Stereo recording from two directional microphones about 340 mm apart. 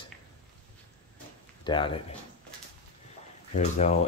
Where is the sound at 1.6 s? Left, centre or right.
Centre.